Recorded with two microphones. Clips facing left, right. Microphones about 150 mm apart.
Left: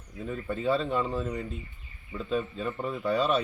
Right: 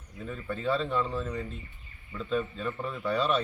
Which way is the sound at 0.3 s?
10° left (ahead or behind).